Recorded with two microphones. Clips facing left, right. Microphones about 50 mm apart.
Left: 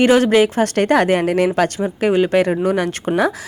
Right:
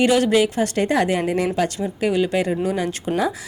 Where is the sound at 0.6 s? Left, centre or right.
Left.